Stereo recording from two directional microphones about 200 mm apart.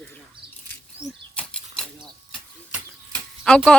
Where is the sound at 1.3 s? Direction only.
5° left (ahead or behind).